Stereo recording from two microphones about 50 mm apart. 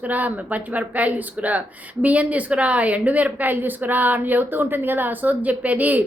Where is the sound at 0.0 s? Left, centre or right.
Right.